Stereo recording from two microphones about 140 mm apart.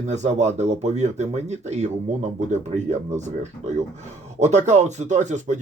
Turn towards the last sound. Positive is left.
turn(degrees=-60)  # may be behind; listen again after turning